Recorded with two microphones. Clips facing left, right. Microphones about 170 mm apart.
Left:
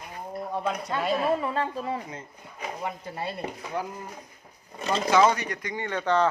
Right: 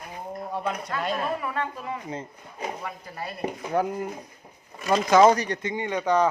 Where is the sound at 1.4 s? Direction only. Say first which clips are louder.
Left 2 dB; 30° left (ahead or behind).